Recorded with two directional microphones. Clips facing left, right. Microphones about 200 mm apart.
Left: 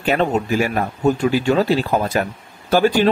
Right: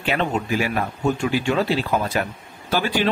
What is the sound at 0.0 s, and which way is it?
Speech, 40° left (ahead or behind).